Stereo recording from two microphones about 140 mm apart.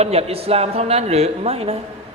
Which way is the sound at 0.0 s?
45° right (ahead or behind).